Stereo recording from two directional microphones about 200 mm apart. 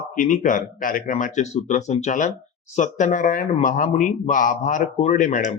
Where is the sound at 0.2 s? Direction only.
40° left (ahead or behind).